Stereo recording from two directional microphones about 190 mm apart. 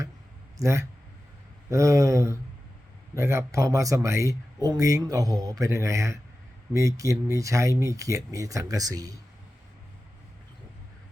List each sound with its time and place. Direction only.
0.6 s speech: 15° right (ahead or behind)